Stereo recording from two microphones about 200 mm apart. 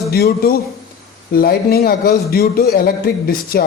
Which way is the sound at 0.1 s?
50° left (ahead or behind).